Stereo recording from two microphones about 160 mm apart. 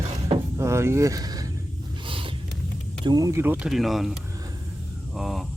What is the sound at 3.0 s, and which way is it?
Speech, 25° right (ahead or behind).